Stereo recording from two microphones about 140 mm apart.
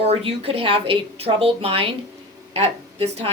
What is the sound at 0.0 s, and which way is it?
Speech, 45° right (ahead or behind).